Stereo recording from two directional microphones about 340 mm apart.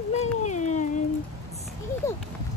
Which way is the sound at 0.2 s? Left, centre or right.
Left.